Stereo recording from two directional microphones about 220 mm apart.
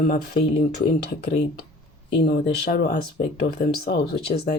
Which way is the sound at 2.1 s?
50° left (ahead or behind).